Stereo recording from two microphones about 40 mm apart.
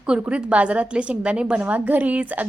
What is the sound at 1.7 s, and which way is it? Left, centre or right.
Speech, right.